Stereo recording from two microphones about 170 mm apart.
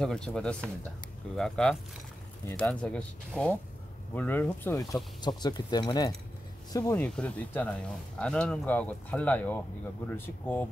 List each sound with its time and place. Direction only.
0.0 s speech: 5° left (ahead or behind); by 7.0 s 20° left (ahead or behind)
7.0 s speech: 5° left (ahead or behind)